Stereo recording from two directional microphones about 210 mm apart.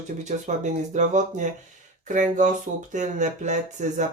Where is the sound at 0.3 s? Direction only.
35° right (ahead or behind).